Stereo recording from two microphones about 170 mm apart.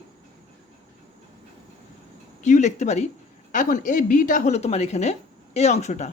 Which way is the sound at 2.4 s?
45° left (ahead or behind).